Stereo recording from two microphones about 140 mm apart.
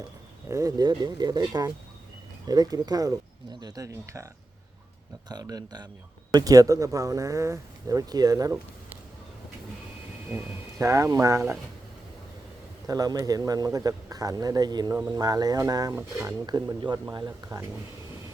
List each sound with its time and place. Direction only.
0.4 s speech: 25° right (ahead or behind)
5.3 s speech: 25° right (ahead or behind)
10.3 s speech: 20° right (ahead or behind)
12.9 s speech: 25° right (ahead or behind)